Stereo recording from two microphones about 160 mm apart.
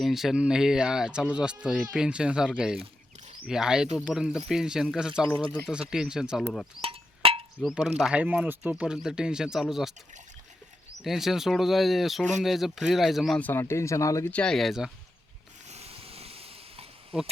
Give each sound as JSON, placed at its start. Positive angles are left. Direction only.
{"t": 0.0, "sound": "speech", "side_deg": 0}
{"t": 6.8, "sound": "cowbell", "side_deg": -35}
{"t": 7.6, "sound": "speech", "side_deg": 0}
{"t": 11.0, "sound": "speech", "side_deg": 0}
{"t": 14.3, "sound": "speech", "side_deg": 5}
{"t": 15.7, "sound": "a sound", "side_deg": -40}